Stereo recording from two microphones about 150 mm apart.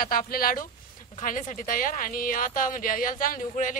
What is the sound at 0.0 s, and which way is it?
Speech, 70° left (ahead or behind).